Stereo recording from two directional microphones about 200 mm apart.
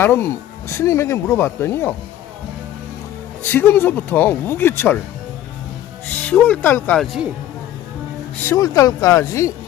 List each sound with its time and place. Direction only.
0.0 s speech: 10° left (ahead or behind)
3.4 s speech: 10° left (ahead or behind)
6.1 s speech: 10° left (ahead or behind)
8.4 s speech: 15° left (ahead or behind)